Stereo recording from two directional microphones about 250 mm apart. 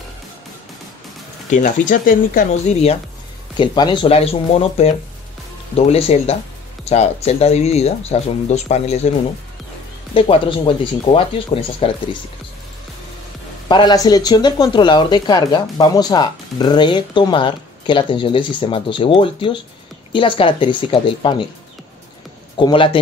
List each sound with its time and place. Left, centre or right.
1.5 s speech: left
10.1 s speech: left
13.7 s speech: centre
22.6 s speech: centre